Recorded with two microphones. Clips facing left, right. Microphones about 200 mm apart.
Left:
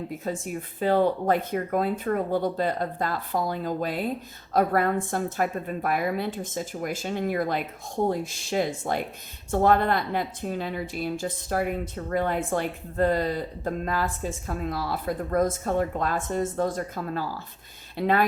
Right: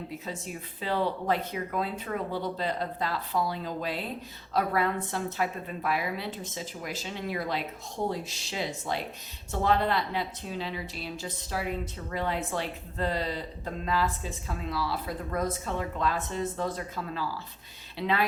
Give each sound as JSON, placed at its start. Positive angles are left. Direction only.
{"t": 0.3, "sound": "a woman's voice", "side_deg": 50}